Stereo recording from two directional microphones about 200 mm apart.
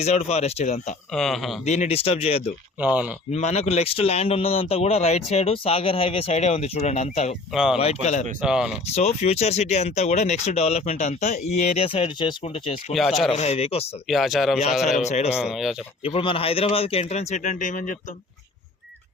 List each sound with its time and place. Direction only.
0.0 s a man's voice: 30° left (ahead or behind)
1.1 s speech: centre (ahead or behind)
1.6 s a man's voice: 35° left (ahead or behind)
2.8 s speech: 5° right (ahead or behind)
3.3 s a man's voice: 30° left (ahead or behind)
7.5 s speech: 5° right (ahead or behind)
8.9 s a man's voice: 30° left (ahead or behind)
12.9 s speech: centre (ahead or behind)
13.3 s a man's voice: 35° left (ahead or behind)
14.1 s speech: centre (ahead or behind)
15.0 s a man's voice: 35° left (ahead or behind)
15.4 s speech: centre (ahead or behind)
16.0 s a man's voice: 25° left (ahead or behind)